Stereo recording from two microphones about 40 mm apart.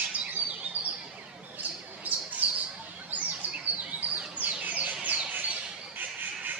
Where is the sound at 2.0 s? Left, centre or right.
Right.